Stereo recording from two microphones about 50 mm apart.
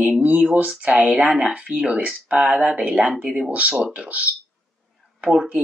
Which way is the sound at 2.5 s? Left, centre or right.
Centre.